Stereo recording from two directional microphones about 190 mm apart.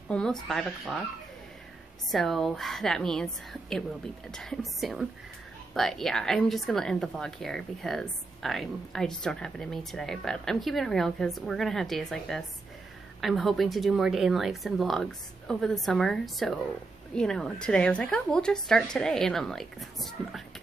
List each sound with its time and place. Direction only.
0.1 s speech: 5° left (ahead or behind)
2.0 s speech: centre (ahead or behind)
4.3 s speech: centre (ahead or behind)